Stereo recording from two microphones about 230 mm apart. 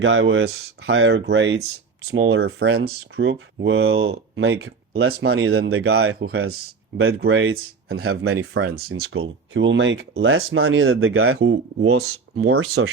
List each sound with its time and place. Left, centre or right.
0.0 s speech: right
2.4 s speech: right
3.2 s speech: right
5.2 s speech: right
6.1 s speech: right
7.3 s speech: right
8.5 s speech: right
8.9 s speech: right